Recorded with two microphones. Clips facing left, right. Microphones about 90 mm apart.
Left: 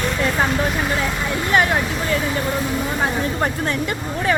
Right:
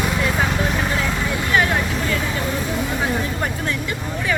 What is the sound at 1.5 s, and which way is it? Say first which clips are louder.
Vehicle: left 2 dB; 30° left (ahead or behind).